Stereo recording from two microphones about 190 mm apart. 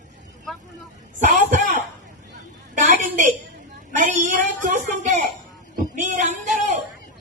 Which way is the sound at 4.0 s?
40° right (ahead or behind).